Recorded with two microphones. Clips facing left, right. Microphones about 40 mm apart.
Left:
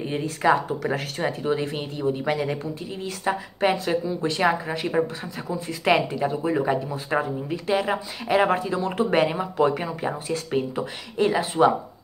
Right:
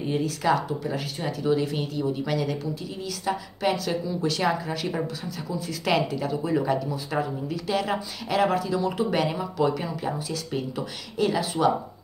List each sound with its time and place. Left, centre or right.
0.0 s speech: left
0.7 s speech: left
1.4 s speech: left